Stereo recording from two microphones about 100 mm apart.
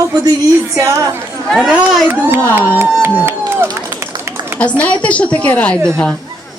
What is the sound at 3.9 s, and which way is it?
Run, 25° right (ahead or behind).